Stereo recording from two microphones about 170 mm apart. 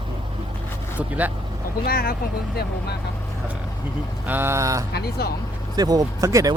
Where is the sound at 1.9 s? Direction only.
65° left (ahead or behind).